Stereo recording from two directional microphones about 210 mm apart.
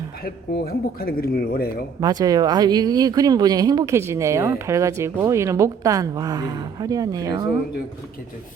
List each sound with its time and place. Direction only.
0.2 s speech: 45° left (ahead or behind)
2.0 s speech: 20° right (ahead or behind)